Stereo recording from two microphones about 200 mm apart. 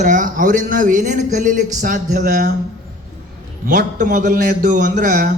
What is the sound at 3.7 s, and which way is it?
A man's voice, 40° right (ahead or behind).